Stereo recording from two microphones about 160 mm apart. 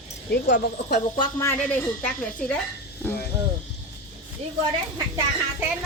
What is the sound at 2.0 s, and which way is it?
Speech, 10° left (ahead or behind).